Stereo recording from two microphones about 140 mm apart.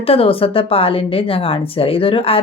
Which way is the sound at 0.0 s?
45° left (ahead or behind).